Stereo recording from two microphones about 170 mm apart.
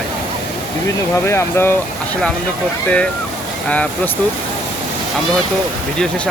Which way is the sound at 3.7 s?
10° left (ahead or behind).